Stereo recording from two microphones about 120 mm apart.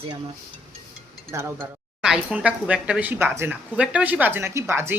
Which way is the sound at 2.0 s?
5° right (ahead or behind).